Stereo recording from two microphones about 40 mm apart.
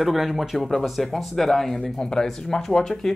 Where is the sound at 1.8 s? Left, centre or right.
Centre.